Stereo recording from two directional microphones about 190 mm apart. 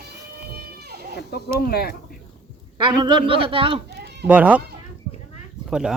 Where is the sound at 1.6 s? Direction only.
55° left (ahead or behind).